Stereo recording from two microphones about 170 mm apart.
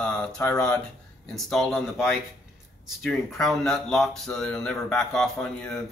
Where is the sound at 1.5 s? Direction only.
Centre (ahead or behind).